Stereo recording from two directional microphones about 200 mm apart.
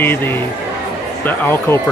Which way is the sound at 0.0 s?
10° left (ahead or behind).